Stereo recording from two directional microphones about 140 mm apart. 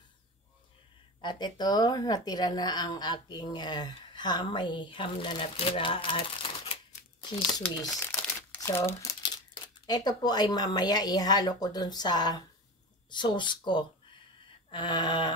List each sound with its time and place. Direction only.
1.2 s speech: 30° left (ahead or behind)
8.1 s crumpling: 5° left (ahead or behind)
8.5 s speech: 20° left (ahead or behind)